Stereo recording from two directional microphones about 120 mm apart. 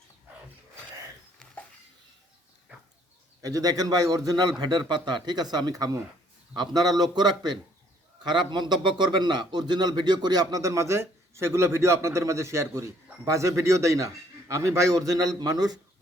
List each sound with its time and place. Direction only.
3.4 s a man's voice: 30° right (ahead or behind)